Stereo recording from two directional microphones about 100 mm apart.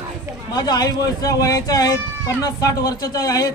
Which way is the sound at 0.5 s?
40° left (ahead or behind).